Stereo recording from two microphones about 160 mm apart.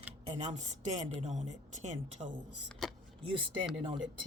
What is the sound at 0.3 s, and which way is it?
A woman's voice, 45° right (ahead or behind).